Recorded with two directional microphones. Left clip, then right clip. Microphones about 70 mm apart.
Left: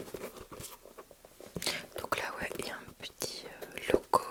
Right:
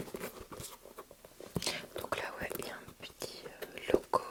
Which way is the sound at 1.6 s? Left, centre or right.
Centre.